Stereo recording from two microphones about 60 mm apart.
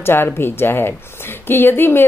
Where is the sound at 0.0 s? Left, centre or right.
Left.